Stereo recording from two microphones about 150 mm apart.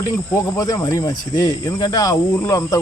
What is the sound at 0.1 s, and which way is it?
Speech, 20° left (ahead or behind).